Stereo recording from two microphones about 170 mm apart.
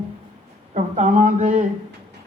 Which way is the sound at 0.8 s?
45° right (ahead or behind).